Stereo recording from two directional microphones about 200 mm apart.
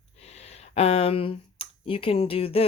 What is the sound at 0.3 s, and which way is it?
Speech, 30° left (ahead or behind).